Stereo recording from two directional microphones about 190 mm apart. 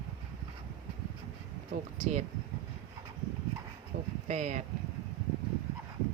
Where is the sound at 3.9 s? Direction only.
45° right (ahead or behind).